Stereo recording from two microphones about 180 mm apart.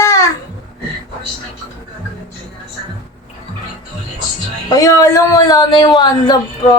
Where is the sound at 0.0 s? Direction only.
15° left (ahead or behind).